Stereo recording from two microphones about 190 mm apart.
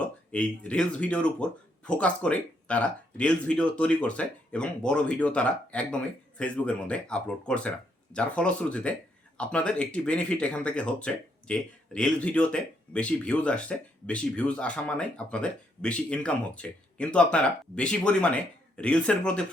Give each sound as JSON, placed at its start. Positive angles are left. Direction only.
{"t": 0.0, "sound": "speech", "side_deg": 5}